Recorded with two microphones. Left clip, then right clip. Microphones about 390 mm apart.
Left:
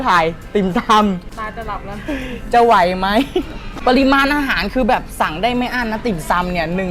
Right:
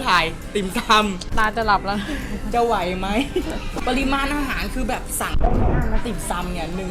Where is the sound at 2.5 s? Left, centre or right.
Left.